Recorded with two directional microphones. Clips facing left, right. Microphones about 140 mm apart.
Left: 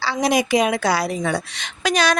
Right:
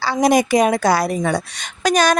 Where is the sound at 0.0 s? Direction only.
45° right (ahead or behind).